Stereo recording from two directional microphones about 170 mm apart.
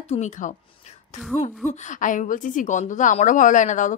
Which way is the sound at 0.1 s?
45° left (ahead or behind).